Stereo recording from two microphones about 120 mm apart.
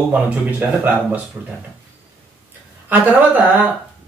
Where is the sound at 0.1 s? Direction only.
15° right (ahead or behind).